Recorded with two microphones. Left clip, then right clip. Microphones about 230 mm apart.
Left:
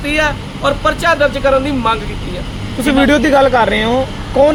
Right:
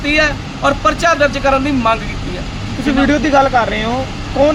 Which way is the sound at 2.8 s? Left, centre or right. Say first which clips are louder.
Left 3 dB; left.